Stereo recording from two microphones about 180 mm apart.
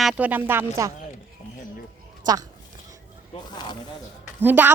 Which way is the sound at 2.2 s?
20° right (ahead or behind).